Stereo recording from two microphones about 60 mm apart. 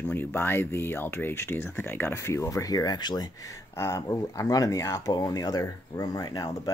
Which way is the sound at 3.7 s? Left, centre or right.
Left.